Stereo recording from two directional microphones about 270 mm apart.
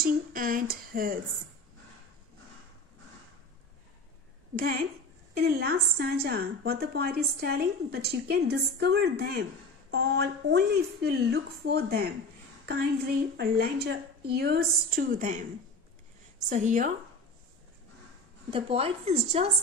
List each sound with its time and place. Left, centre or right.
0.0 s a woman's voice: right
4.6 s a woman's voice: right
13.4 s a woman's voice: right
16.4 s a woman's voice: right
18.5 s a woman's voice: right